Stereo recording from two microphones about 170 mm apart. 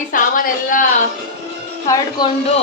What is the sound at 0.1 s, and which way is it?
Speech, 55° left (ahead or behind).